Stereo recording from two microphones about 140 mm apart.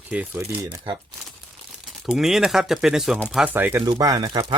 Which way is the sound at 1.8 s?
5° right (ahead or behind).